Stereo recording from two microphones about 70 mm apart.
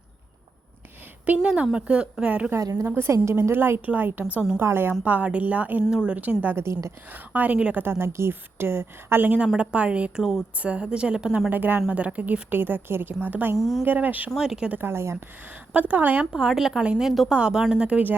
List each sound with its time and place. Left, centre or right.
1.2 s a woman's voice: right
2.8 s a woman's voice: right
6.6 s a woman's voice: right
7.1 s a woman's voice: right
14.3 s a woman's voice: centre
14.7 s a woman's voice: right
15.7 s speech: right
16.3 s a woman's voice: centre